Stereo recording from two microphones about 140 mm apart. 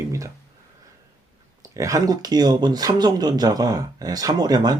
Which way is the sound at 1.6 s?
25° right (ahead or behind).